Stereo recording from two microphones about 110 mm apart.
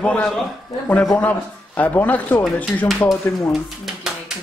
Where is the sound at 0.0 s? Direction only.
5° left (ahead or behind).